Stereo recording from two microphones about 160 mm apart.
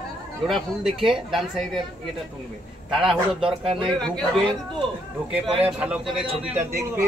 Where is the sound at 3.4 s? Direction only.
35° right (ahead or behind).